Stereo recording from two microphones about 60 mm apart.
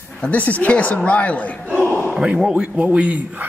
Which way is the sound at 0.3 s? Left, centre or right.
Left.